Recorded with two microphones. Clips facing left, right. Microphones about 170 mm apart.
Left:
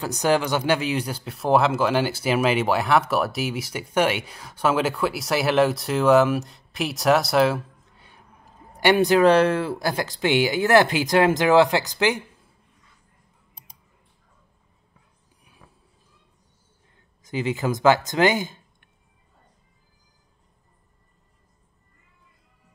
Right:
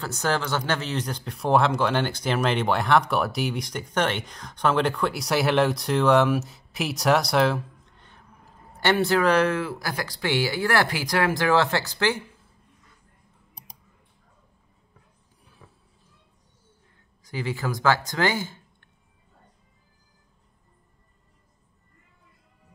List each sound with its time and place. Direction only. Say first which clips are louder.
0.0 s speech: left 5 dB; 15° left (ahead or behind)
17.2 s speech: left 4 dB; 20° left (ahead or behind)